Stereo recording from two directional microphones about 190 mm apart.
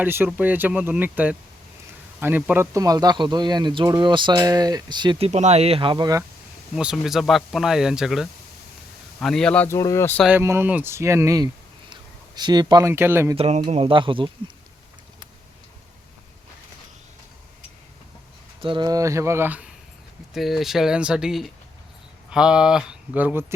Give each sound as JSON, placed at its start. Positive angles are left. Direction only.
{"t": 0.0, "sound": "speech", "side_deg": -10}
{"t": 6.7, "sound": "speech", "side_deg": -5}
{"t": 10.2, "sound": "speech", "side_deg": -10}
{"t": 13.3, "sound": "speech", "side_deg": -30}
{"t": 18.6, "sound": "speech", "side_deg": -25}